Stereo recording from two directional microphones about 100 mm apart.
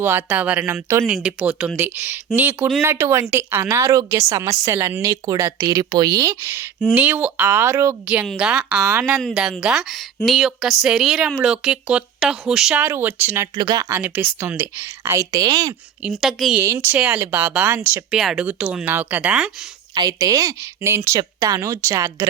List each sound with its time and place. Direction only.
0.0 s speech: 20° right (ahead or behind)
0.6 s speech: 30° right (ahead or behind)
1.0 s a woman's voice: 10° right (ahead or behind)
6.8 s speech: 15° right (ahead or behind)
8.0 s a woman's voice: 15° right (ahead or behind)
12.8 s speech: 20° right (ahead or behind)
13.6 s speech: 45° right (ahead or behind)
14.0 s speech: 15° right (ahead or behind); by 15.7 s 40° right (ahead or behind)
16.2 s a woman's voice: centre (ahead or behind)
16.6 s speech: 20° right (ahead or behind)
18.1 s a woman's voice: 5° right (ahead or behind)
19.9 s a woman's voice: 40° right (ahead or behind)